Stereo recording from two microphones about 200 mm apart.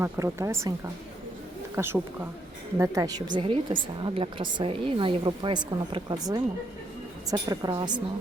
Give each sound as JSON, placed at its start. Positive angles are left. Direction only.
{"t": 0.0, "sound": "speech", "side_deg": -15}
{"t": 1.7, "sound": "a woman's voice", "side_deg": -10}